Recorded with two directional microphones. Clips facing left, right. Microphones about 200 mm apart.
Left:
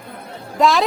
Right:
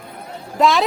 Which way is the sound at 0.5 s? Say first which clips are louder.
Even; centre (ahead or behind).